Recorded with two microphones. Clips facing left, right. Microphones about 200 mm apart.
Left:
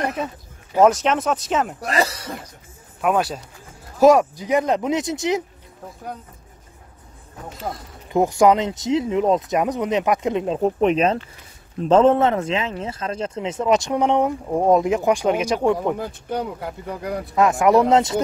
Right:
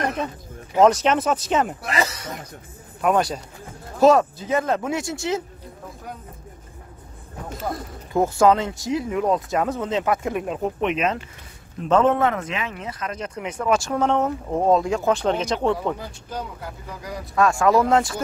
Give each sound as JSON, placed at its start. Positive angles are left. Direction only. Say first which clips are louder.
{"t": 0.7, "sound": "speech", "louder": "even", "side_deg": 0}
{"t": 1.8, "sound": "speech", "louder": "left 3 dB", "side_deg": 35}
{"t": 3.0, "sound": "speech", "louder": "even", "side_deg": 5}
{"t": 8.1, "sound": "speech", "louder": "left 2 dB", "side_deg": 15}
{"t": 16.3, "sound": "speech", "louder": "left 6 dB", "side_deg": 60}
{"t": 17.4, "sound": "speech", "louder": "left 2 dB", "side_deg": 20}